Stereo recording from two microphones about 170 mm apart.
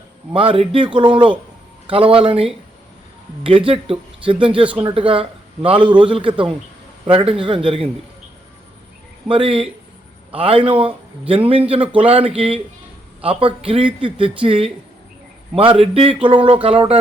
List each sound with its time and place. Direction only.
0.3 s a man's voice: 30° right (ahead or behind)
3.7 s a man's voice: 30° right (ahead or behind)
9.2 s a man's voice: 30° right (ahead or behind)